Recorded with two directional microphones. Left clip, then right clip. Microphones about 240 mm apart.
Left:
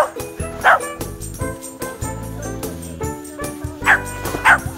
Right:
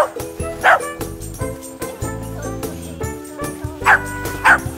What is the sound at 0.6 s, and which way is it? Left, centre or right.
Bow-wow, right.